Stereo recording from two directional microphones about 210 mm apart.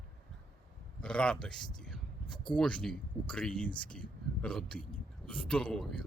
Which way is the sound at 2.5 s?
5° left (ahead or behind).